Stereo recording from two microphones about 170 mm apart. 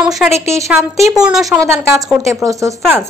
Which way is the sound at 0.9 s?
20° right (ahead or behind).